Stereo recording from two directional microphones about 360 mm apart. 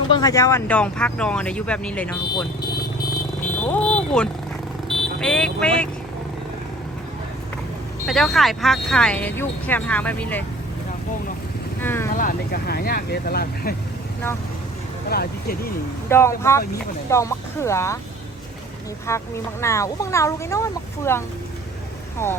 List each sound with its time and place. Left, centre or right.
0.1 s speech: centre
3.7 s vehicle: centre
4.9 s speech: centre
8.0 s speech: centre
11.8 s speech: centre
12.1 s speech: left
15.1 s speech: left
16.0 s speech: centre
19.1 s speech: centre